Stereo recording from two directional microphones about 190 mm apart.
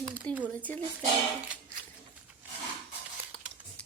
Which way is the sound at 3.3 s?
5° left (ahead or behind).